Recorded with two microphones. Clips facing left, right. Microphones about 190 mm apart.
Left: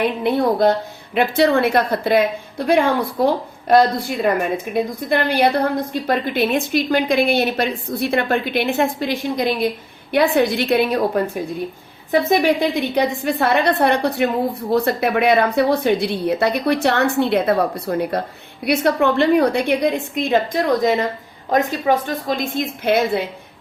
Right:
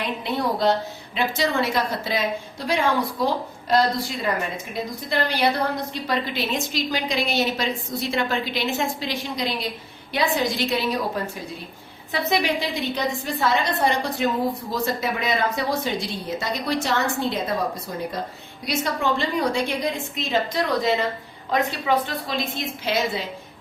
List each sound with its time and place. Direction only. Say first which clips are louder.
0.2 s a woman's voice: left 6 dB; 55° left (ahead or behind)